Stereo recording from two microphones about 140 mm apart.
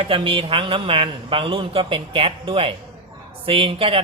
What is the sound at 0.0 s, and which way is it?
Speech, 40° right (ahead or behind).